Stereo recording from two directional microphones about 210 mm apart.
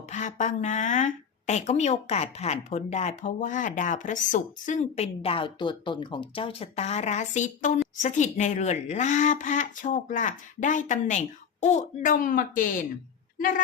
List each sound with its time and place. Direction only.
0.1 s a woman's voice: 35° left (ahead or behind)